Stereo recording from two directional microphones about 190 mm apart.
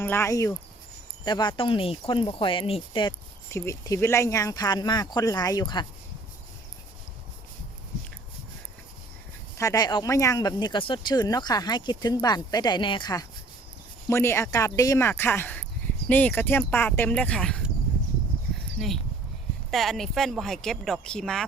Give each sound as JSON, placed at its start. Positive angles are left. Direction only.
{"t": 0.0, "sound": "speech", "side_deg": 10}
{"t": 9.6, "sound": "speech", "side_deg": 20}
{"t": 19.7, "sound": "speech", "side_deg": 0}